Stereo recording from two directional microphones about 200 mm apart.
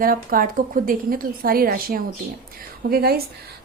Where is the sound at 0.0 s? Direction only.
45° right (ahead or behind).